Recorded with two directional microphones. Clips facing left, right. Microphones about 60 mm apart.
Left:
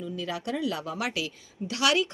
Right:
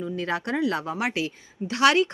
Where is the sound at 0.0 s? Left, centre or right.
Right.